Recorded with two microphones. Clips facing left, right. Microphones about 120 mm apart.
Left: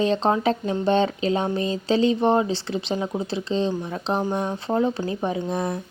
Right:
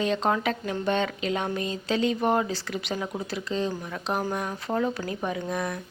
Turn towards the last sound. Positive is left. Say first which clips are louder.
# left 4 dB
turn(degrees=30)  # may be behind; listen again after turning